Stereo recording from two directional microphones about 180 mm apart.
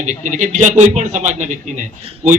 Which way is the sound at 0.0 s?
45° right (ahead or behind).